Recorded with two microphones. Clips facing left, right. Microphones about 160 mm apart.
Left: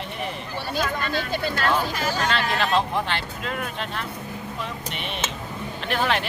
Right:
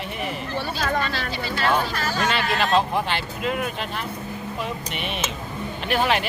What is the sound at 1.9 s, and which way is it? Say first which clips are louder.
Speech: left 1 dB; 15° left (ahead or behind).